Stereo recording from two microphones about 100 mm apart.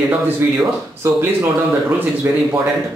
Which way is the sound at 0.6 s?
30° right (ahead or behind).